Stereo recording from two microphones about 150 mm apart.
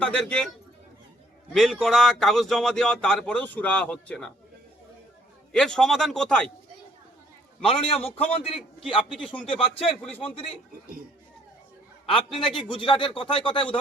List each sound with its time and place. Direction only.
0.0 s a man's voice: 5° left (ahead or behind)
1.5 s speech: centre (ahead or behind)
5.5 s speech: 5° left (ahead or behind)
7.6 s speech: 35° left (ahead or behind)
9.2 s a man's voice: 10° left (ahead or behind)
9.5 s speech: 40° left (ahead or behind)
12.1 s speech: centre (ahead or behind)
12.7 s speech: 35° left (ahead or behind)